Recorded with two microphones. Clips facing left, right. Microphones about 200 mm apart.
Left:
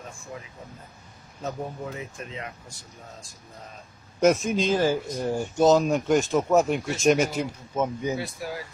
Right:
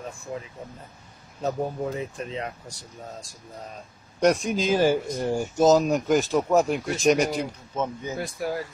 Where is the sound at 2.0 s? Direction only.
35° right (ahead or behind).